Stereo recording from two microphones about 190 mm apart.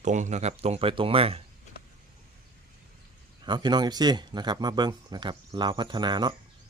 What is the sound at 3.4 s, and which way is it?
Speech, 25° right (ahead or behind).